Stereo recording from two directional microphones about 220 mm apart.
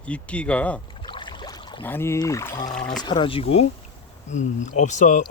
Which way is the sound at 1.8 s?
10° left (ahead or behind).